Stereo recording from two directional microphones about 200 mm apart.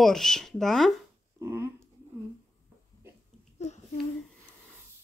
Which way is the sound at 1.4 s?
15° right (ahead or behind).